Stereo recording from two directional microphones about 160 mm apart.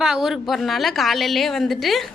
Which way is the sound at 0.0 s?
5° right (ahead or behind).